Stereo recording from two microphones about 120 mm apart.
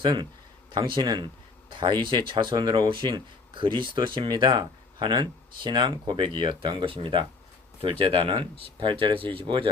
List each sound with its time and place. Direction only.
0.0 s speech: 40° right (ahead or behind)